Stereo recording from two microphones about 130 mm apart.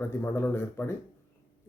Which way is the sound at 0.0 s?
20° left (ahead or behind).